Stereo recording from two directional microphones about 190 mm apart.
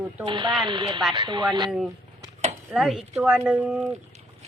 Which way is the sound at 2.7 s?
Centre (ahead or behind).